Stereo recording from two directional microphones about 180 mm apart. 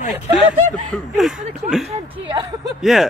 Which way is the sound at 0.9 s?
Centre (ahead or behind).